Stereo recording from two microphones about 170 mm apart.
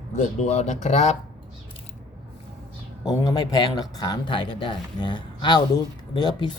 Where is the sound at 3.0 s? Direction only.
25° left (ahead or behind).